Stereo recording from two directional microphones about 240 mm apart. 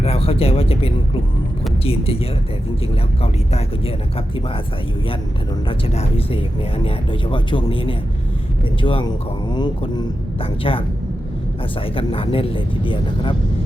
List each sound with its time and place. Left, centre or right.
0.0 s speech: left
5.6 s speech: left
11.9 s speech: left